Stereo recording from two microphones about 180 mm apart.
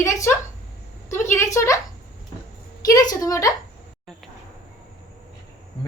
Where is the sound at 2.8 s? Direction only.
20° left (ahead or behind).